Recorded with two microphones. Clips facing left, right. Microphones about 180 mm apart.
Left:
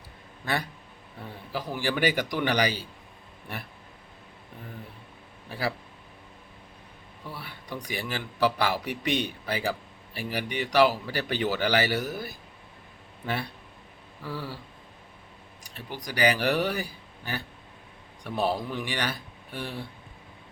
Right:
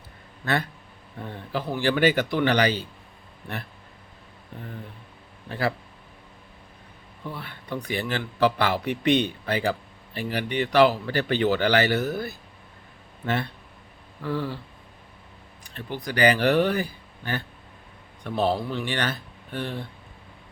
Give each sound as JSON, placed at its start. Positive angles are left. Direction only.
{"t": 0.4, "sound": "speech", "side_deg": 10}
{"t": 1.7, "sound": "speech", "side_deg": 10}
{"t": 5.5, "sound": "speech", "side_deg": 10}
{"t": 7.3, "sound": "speech", "side_deg": 10}
{"t": 16.0, "sound": "speech", "side_deg": 10}